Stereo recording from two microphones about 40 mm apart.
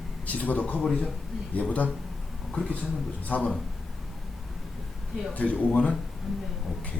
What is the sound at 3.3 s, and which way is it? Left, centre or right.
Speech, left.